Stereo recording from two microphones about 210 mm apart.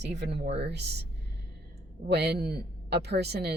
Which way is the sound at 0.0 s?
55° right (ahead or behind).